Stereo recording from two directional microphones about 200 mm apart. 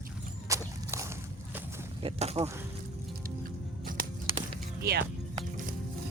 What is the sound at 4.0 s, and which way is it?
Walk, 45° right (ahead or behind).